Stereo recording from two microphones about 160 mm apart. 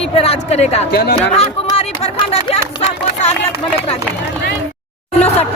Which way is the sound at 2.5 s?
40° left (ahead or behind).